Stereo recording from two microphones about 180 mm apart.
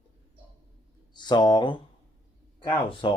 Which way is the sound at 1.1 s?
25° left (ahead or behind).